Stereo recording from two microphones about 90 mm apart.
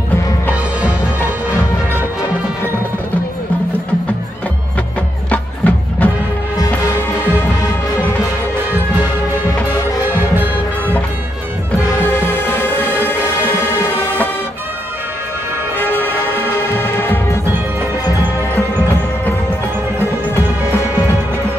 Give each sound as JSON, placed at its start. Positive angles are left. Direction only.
{"t": 5.3, "sound": "music", "side_deg": 15}
{"t": 10.0, "sound": "music", "side_deg": -20}
{"t": 12.0, "sound": "music", "side_deg": 25}
{"t": 15.9, "sound": "music", "side_deg": 25}